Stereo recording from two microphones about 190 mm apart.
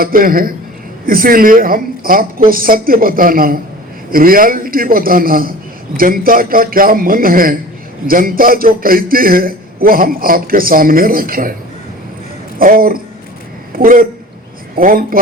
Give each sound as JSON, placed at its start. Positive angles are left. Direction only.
{"t": 0.0, "sound": "a man's voice", "side_deg": -50}
{"t": 12.5, "sound": "a man's voice", "side_deg": -50}